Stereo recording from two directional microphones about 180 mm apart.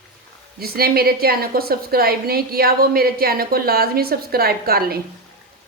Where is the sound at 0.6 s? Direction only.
55° right (ahead or behind).